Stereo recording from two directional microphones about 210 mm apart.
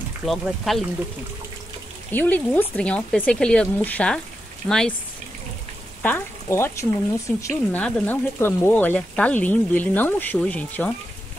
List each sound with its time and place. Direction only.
0.2 s speech: centre (ahead or behind)
2.1 s speech: 10° left (ahead or behind)
6.0 s speech: 10° left (ahead or behind)